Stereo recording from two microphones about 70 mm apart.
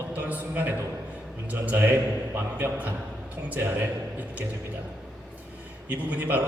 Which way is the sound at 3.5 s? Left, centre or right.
Right.